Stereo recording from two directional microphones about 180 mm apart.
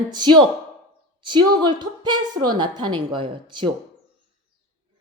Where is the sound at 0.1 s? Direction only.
25° right (ahead or behind).